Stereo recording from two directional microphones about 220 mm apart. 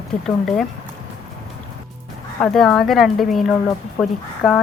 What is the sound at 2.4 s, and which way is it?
Speech, centre (ahead or behind).